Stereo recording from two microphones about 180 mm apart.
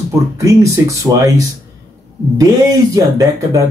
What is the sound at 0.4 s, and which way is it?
Speech, 15° right (ahead or behind).